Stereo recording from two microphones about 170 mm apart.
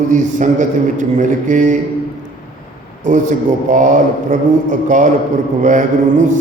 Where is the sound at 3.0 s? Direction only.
45° right (ahead or behind).